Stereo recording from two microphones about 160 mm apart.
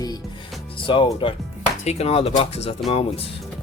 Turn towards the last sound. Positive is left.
turn(degrees=40)  # may be behind; listen again after turning